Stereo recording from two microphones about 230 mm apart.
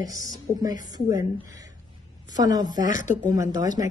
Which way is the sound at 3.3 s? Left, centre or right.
Centre.